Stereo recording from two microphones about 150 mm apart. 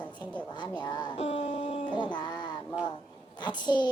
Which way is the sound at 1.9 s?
30° left (ahead or behind).